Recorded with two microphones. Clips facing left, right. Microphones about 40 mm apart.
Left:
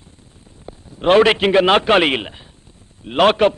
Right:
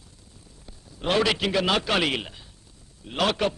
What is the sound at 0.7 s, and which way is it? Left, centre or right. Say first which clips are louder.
A man's voice: left 12 dB; left.